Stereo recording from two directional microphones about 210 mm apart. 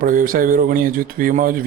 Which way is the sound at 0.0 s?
40° right (ahead or behind).